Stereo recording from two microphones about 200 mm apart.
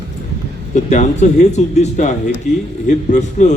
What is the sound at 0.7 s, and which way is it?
Speech, 35° left (ahead or behind).